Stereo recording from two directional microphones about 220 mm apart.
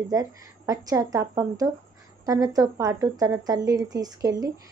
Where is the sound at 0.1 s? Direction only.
15° right (ahead or behind).